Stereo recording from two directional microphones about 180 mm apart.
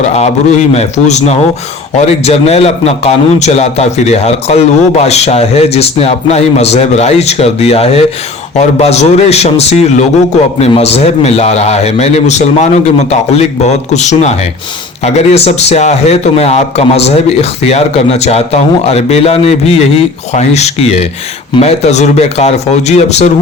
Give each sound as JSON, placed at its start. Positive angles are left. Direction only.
{"t": 0.7, "sound": "a man's voice", "side_deg": 35}